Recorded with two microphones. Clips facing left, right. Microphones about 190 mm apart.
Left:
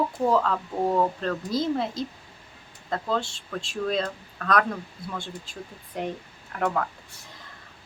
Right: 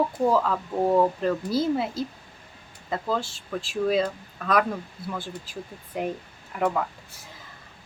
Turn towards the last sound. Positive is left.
turn(degrees=-5)  # may be behind; listen again after turning